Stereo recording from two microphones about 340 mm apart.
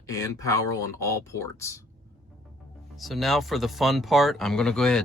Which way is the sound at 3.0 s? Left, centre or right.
Centre.